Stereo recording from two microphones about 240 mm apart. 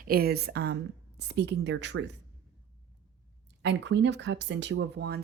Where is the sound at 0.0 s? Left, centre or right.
Right.